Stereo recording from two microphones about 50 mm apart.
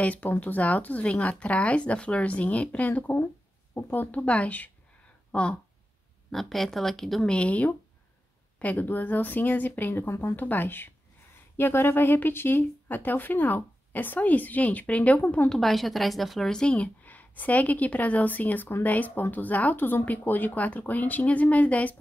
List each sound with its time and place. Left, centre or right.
0.0 s speech: left
4.2 s speech: left
6.3 s speech: centre
7.2 s speech: left
8.7 s speech: left
10.0 s speech: left
10.3 s a woman's voice: left
15.5 s speech: centre
16.7 s speech: left